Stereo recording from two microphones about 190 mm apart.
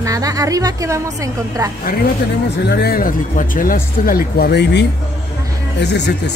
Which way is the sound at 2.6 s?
55° left (ahead or behind).